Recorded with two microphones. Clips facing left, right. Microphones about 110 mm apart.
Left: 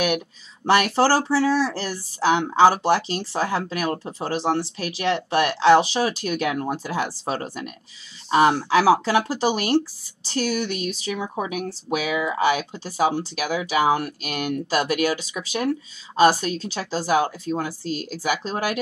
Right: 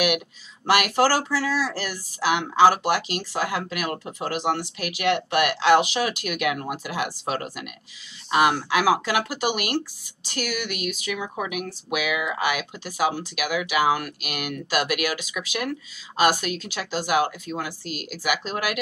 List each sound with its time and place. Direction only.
0.7 s speech: 30° left (ahead or behind)